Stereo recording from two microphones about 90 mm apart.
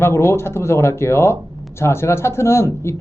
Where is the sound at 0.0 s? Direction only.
25° left (ahead or behind).